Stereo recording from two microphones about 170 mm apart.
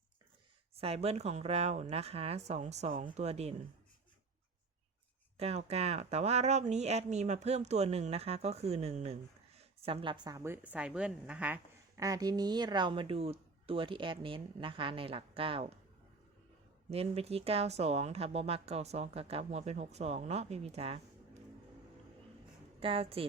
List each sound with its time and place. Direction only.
0.8 s speech: 35° right (ahead or behind)
5.4 s a woman's voice: 35° right (ahead or behind); by 12.0 s 10° right (ahead or behind)
12.0 s speech: 20° right (ahead or behind)
16.9 s speech: 35° right (ahead or behind)
22.8 s speech: 35° right (ahead or behind)